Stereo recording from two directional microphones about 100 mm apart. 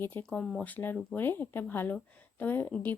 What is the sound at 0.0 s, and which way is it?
Speech, 15° left (ahead or behind).